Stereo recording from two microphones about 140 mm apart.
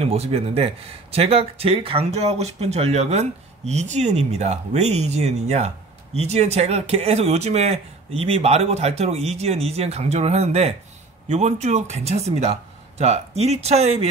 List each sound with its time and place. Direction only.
0.0 s speech: 45° right (ahead or behind)